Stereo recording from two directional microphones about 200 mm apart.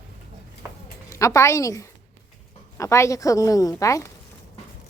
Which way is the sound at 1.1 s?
15° left (ahead or behind).